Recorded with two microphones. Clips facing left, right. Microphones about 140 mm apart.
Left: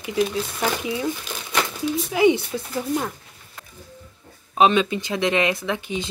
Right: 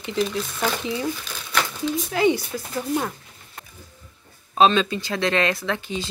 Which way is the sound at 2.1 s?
20° left (ahead or behind).